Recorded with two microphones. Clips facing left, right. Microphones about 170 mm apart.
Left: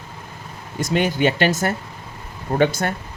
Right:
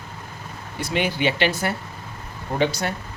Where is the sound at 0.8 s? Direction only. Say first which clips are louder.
Left 4 dB; 45° left (ahead or behind).